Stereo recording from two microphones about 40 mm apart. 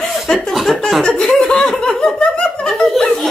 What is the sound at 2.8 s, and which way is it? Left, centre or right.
Snicker, centre.